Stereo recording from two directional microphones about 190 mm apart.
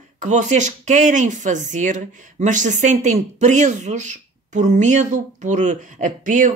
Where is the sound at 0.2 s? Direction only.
40° right (ahead or behind).